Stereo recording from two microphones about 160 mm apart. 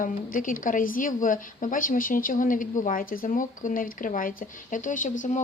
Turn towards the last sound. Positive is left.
turn(degrees=50)  # may be behind; listen again after turning